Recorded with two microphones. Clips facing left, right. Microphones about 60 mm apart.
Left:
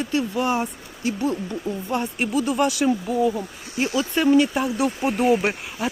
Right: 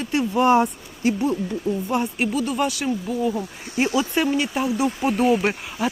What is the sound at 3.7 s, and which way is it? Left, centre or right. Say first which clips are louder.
Speech: right 2 dB; right.